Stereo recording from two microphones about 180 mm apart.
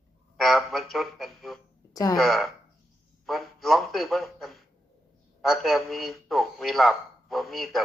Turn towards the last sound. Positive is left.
turn(degrees=0)  # may be behind; listen again after turning